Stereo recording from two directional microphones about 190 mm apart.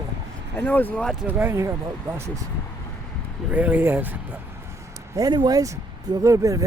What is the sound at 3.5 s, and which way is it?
Speech, 10° right (ahead or behind).